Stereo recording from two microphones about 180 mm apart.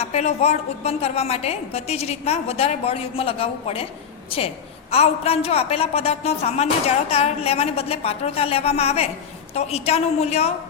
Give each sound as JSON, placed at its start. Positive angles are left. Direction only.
{"t": 0.0, "sound": "a woman's voice", "side_deg": 35}
{"t": 4.9, "sound": "a woman's voice", "side_deg": 35}